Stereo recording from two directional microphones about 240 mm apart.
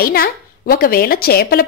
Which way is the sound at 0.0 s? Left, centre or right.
Left.